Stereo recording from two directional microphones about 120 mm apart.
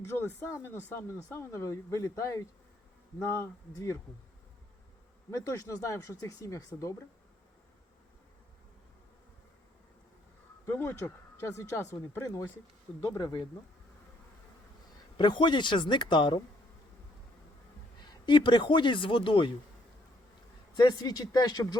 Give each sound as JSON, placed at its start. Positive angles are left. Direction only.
{"t": 0.2, "sound": "speech", "side_deg": 20}
{"t": 5.3, "sound": "speech", "side_deg": 25}
{"t": 10.7, "sound": "speech", "side_deg": 20}
{"t": 15.2, "sound": "speech", "side_deg": 40}
{"t": 18.3, "sound": "speech", "side_deg": 40}
{"t": 20.7, "sound": "speech", "side_deg": 35}